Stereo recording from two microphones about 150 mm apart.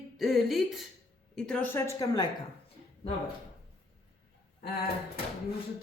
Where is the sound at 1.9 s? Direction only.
25° left (ahead or behind).